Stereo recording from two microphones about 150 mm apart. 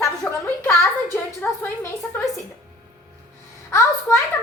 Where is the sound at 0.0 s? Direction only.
20° left (ahead or behind).